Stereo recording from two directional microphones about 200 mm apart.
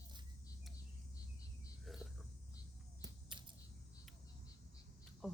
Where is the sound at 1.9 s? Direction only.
Centre (ahead or behind).